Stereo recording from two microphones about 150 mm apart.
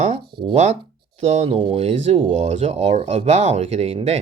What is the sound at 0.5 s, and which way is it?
Speech, 50° right (ahead or behind).